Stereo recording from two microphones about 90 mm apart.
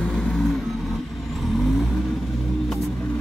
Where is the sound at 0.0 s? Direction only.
5° left (ahead or behind).